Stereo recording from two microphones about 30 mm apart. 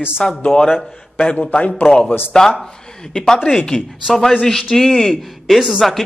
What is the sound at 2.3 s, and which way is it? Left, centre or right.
Speech, centre.